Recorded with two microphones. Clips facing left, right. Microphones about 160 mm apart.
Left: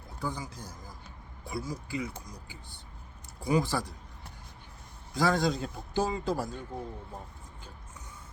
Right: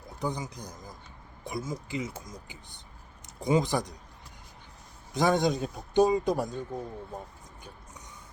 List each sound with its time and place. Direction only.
0.2 s a man's voice: 20° right (ahead or behind)
5.1 s a man's voice: 20° right (ahead or behind)